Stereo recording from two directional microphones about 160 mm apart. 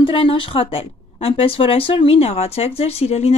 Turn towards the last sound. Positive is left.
turn(degrees=45)  # may be behind; listen again after turning